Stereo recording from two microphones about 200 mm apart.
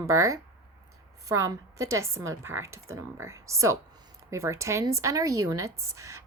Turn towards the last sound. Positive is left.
turn(degrees=-15)  # may be behind; listen again after turning